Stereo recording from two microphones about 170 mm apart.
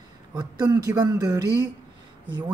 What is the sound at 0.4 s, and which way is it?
Speech, 20° right (ahead or behind).